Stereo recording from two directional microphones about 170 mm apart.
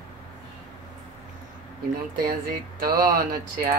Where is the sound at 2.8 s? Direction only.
60° right (ahead or behind).